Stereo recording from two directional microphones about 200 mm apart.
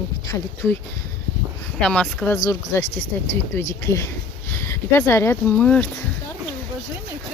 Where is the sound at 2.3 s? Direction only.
20° left (ahead or behind).